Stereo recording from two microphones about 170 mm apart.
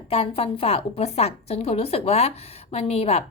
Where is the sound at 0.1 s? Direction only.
35° left (ahead or behind).